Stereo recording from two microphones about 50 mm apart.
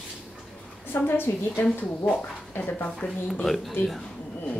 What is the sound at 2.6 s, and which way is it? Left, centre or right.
Speech, left.